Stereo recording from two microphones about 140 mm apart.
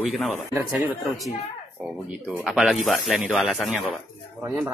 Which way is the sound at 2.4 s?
Centre (ahead or behind).